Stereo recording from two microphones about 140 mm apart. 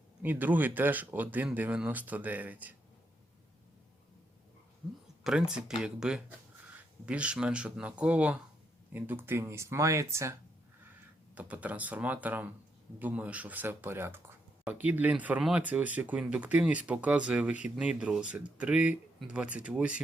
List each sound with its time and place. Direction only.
0.2 s speech: 15° right (ahead or behind)
5.2 s speech: 5° right (ahead or behind)
11.3 s speech: 10° right (ahead or behind)